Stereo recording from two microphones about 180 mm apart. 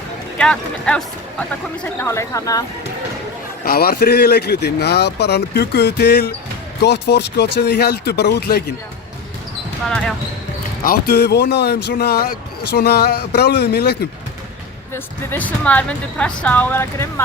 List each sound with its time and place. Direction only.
0.3 s speech: 5° left (ahead or behind)
3.6 s speech: 55° left (ahead or behind)
10.8 s speech: 55° left (ahead or behind)
14.9 s speech: 10° left (ahead or behind)